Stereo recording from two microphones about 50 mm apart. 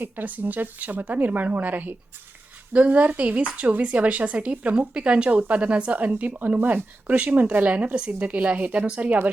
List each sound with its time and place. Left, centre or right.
0.0 s speech: right